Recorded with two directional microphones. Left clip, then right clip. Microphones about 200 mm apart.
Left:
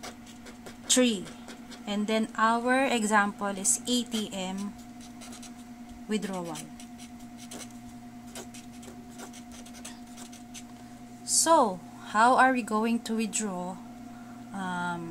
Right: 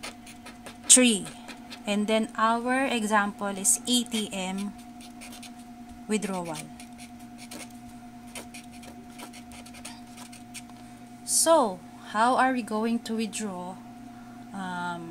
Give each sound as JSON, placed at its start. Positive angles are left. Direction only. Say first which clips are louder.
{"t": 0.8, "sound": "a woman's voice", "louder": "right 4 dB", "side_deg": -25}
{"t": 1.9, "sound": "a woman's voice", "louder": "right 3 dB", "side_deg": -15}
{"t": 6.0, "sound": "a woman's voice", "louder": "right 3 dB", "side_deg": -20}
{"t": 11.4, "sound": "speech", "louder": "right 1 dB", "side_deg": 0}
{"t": 14.5, "sound": "a sound", "louder": "even", "side_deg": -5}